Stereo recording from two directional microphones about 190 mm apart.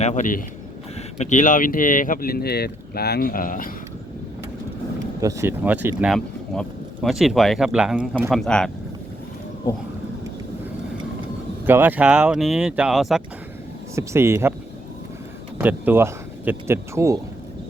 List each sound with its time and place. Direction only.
0.0 s speech: 40° left (ahead or behind)
5.2 s speech: 15° right (ahead or behind); by 8.7 s 5° left (ahead or behind)
11.6 s speech: 10° right (ahead or behind)
13.9 s speech: 15° right (ahead or behind)
15.5 s speech: 10° right (ahead or behind)